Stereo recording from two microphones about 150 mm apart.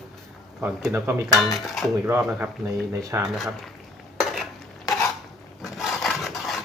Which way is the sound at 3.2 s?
Centre (ahead or behind).